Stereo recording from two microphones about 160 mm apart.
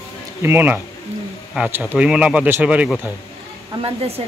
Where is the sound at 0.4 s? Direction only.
10° right (ahead or behind).